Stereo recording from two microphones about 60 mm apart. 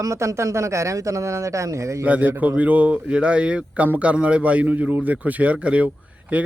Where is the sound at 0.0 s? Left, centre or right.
Right.